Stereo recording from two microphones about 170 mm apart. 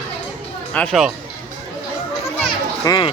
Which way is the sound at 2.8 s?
25° left (ahead or behind).